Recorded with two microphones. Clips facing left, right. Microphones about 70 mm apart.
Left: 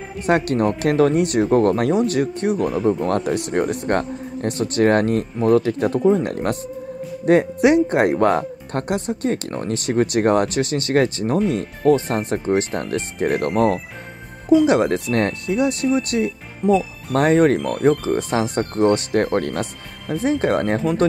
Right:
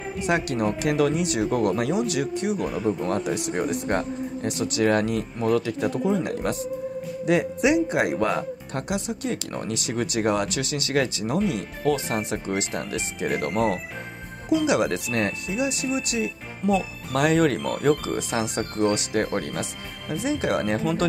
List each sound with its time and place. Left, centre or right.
0.3 s speech: left
14.7 s speech: left
17.3 s speech: left
18.1 s speech: left
19.6 s speech: centre
20.2 s speech: left